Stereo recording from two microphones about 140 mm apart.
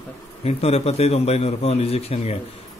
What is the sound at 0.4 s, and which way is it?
Speech, 50° left (ahead or behind).